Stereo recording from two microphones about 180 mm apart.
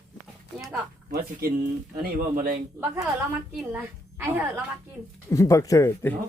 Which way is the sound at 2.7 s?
15° right (ahead or behind).